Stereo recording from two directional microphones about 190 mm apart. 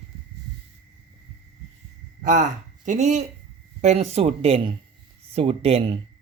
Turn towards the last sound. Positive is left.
turn(degrees=-30)  # may be behind; listen again after turning